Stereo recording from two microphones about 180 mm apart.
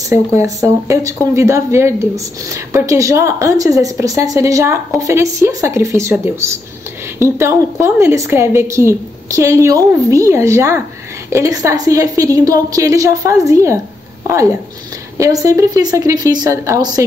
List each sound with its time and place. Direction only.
0.1 s a woman's voice: 15° right (ahead or behind)